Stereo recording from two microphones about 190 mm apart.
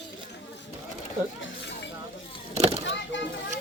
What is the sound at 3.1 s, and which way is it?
Children playing, 75° left (ahead or behind).